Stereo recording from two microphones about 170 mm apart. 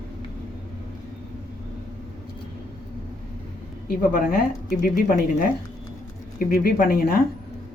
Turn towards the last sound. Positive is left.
turn(degrees=60)  # may be behind; listen again after turning